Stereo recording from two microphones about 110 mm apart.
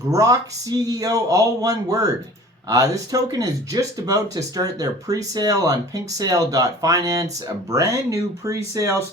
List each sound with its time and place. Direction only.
0.1 s speech: 30° right (ahead or behind)